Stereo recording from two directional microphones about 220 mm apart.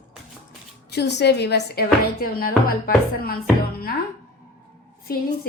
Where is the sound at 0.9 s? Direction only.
50° left (ahead or behind).